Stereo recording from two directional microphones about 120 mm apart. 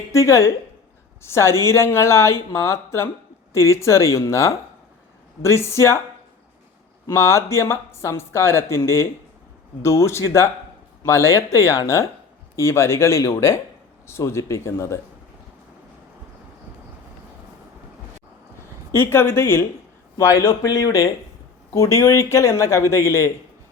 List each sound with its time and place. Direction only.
0.1 s speech: 25° left (ahead or behind)
7.1 s speech: 20° left (ahead or behind)
18.9 s speech: 20° left (ahead or behind)